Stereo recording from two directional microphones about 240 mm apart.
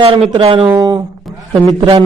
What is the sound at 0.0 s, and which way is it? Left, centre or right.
A man's voice, right.